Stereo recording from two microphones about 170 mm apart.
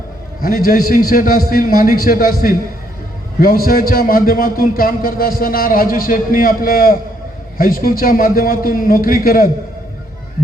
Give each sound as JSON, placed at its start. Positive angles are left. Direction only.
{"t": 0.4, "sound": "a man's voice", "side_deg": 60}